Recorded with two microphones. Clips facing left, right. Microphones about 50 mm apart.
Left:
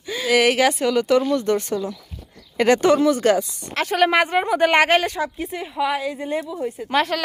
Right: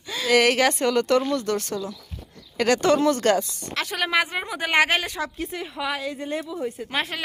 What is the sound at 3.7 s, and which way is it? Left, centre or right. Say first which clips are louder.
A woman's voice: left 7 dB; left.